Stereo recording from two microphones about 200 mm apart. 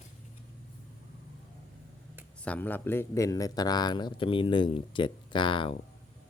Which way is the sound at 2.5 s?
10° left (ahead or behind).